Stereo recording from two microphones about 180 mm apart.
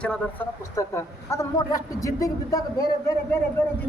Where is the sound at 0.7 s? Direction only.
15° left (ahead or behind).